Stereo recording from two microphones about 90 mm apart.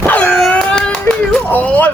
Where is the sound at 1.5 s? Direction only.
20° left (ahead or behind).